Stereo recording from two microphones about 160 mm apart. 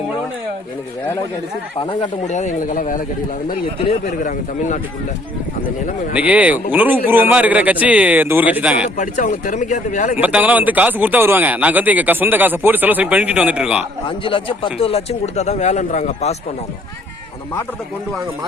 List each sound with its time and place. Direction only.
2.0 s speech: 45° left (ahead or behind)
6.1 s speech: 10° right (ahead or behind)
9.0 s speech: 50° left (ahead or behind)
10.2 s speech: 10° right (ahead or behind)
14.3 s speech: 30° left (ahead or behind); by 16.3 s 50° left (ahead or behind)